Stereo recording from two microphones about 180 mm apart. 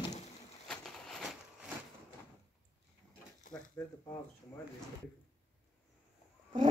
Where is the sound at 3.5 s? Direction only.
20° left (ahead or behind).